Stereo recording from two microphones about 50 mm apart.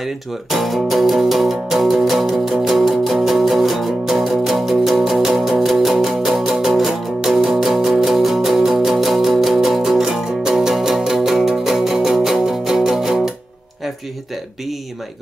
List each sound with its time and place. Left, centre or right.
0.0 s music: centre
10.2 s music: centre